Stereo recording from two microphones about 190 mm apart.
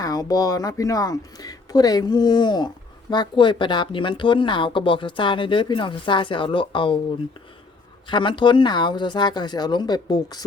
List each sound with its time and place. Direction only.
0.0 s speech: 20° left (ahead or behind)
8.0 s speech: 25° left (ahead or behind)